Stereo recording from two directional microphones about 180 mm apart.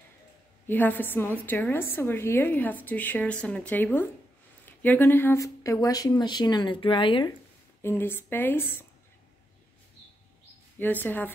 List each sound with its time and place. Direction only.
0.7 s a woman's voice: 10° left (ahead or behind); by 7.3 s 25° left (ahead or behind)
7.8 s a woman's voice: 10° left (ahead or behind)
10.8 s a woman's voice: 10° left (ahead or behind)